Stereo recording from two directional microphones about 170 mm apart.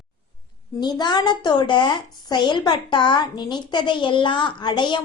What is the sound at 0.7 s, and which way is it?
A woman's voice, 25° left (ahead or behind).